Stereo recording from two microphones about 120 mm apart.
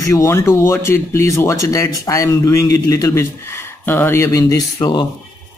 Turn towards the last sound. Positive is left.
turn(degrees=30)  # may be behind; listen again after turning